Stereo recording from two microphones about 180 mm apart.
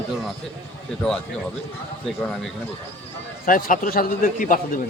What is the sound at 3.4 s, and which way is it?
A man's voice, 50° left (ahead or behind).